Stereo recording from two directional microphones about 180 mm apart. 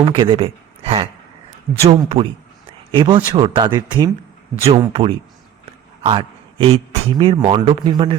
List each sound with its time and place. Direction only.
0.0 s a man's voice: 30° right (ahead or behind)